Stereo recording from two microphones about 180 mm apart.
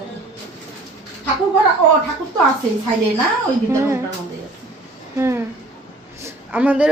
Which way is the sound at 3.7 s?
15° right (ahead or behind).